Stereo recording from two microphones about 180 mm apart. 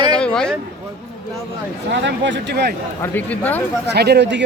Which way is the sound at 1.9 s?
90° right.